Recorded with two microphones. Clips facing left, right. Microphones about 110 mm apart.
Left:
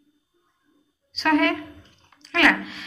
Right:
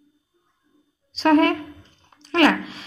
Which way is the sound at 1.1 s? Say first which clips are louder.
Right 4 dB; 35° right (ahead or behind).